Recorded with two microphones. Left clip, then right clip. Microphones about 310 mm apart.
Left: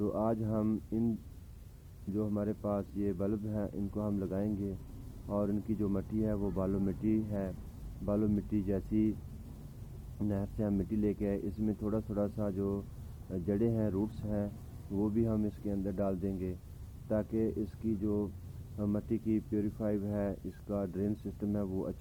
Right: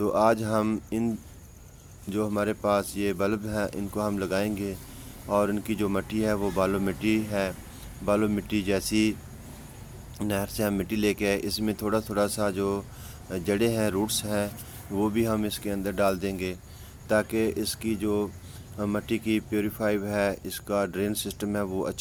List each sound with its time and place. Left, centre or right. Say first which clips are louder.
0.0 s speech: right 11 dB; centre
2.1 s speech: right 9 dB; centre
10.2 s speech: right 9 dB; centre